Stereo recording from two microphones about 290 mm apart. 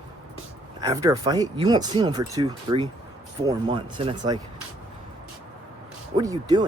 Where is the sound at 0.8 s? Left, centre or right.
Centre.